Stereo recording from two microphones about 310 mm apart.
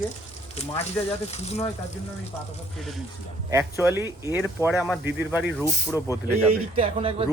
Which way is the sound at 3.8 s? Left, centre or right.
Centre.